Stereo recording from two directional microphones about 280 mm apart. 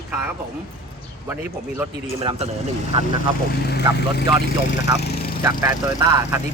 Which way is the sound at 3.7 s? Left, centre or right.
Left.